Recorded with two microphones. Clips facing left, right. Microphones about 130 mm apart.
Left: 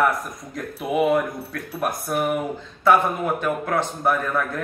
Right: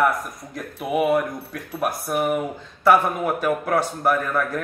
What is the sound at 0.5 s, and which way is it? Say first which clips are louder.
Speech: left 1 dB; 5° right (ahead or behind).